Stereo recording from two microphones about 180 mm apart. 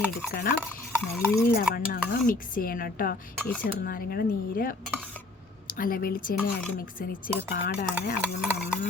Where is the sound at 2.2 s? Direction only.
50° left (ahead or behind).